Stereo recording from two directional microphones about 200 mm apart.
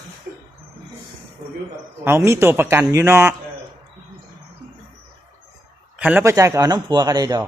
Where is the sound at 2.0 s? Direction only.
15° right (ahead or behind).